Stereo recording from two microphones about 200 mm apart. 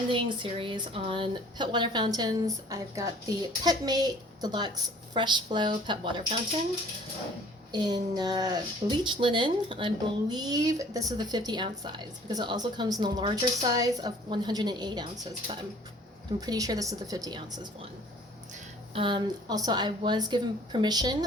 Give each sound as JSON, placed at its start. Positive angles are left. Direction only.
{"t": 0.1, "sound": "speech", "side_deg": -25}
{"t": 7.7, "sound": "a woman's voice", "side_deg": -20}
{"t": 18.9, "sound": "speech", "side_deg": -25}